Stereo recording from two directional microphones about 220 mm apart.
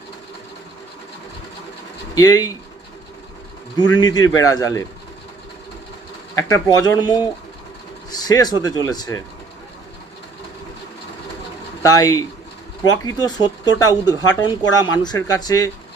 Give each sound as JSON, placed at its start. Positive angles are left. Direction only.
{"t": 2.1, "sound": "speech", "side_deg": 15}
{"t": 3.9, "sound": "speech", "side_deg": 20}
{"t": 6.3, "sound": "speech", "side_deg": 15}
{"t": 11.8, "sound": "speech", "side_deg": 15}